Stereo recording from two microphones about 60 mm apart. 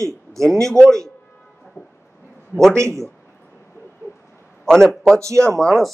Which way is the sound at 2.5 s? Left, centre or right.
Right.